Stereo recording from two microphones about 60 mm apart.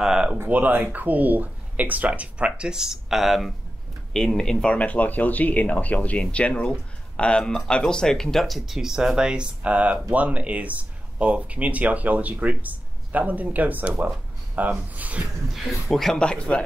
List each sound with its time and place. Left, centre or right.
0.0 s a sound: centre
0.5 s speech: right; by 3.5 s centre
4.1 s speech: centre; by 15.2 s right
15.5 s speech: centre
16.2 s speech: centre